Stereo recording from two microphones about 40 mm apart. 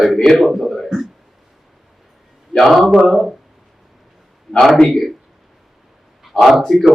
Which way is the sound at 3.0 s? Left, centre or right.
Centre.